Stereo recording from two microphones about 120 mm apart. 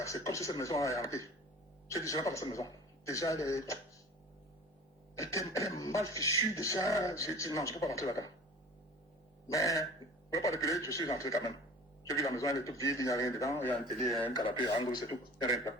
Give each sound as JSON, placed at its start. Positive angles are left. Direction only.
{"t": 0.0, "sound": "speech", "side_deg": 25}
{"t": 5.1, "sound": "speech", "side_deg": 25}
{"t": 9.5, "sound": "speech", "side_deg": 30}
{"t": 14.4, "sound": "speech", "side_deg": 40}